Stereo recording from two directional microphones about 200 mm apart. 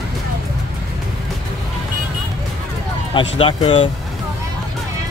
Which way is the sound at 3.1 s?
25° left (ahead or behind).